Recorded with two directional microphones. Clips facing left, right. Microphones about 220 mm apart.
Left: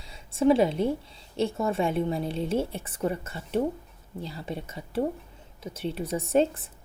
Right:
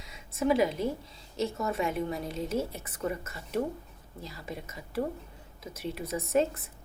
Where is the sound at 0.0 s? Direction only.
30° left (ahead or behind).